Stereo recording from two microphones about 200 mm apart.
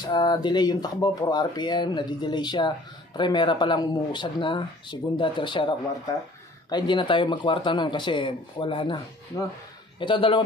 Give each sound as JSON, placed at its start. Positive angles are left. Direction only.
{"t": 0.0, "sound": "speech", "side_deg": 20}